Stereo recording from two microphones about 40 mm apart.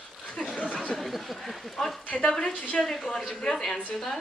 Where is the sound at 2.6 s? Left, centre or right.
Left.